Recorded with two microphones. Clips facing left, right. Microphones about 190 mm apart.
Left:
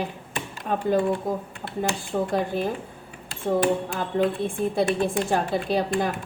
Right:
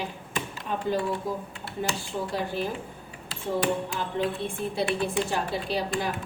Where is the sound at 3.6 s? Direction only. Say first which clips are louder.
Left 4 dB; 55° left (ahead or behind).